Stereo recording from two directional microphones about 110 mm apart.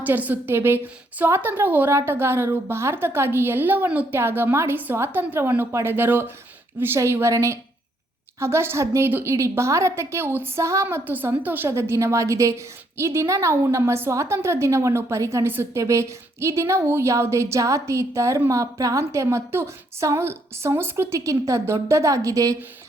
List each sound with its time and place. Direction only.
0.0 s a woman's voice: 15° right (ahead or behind); by 22.5 s 30° right (ahead or behind)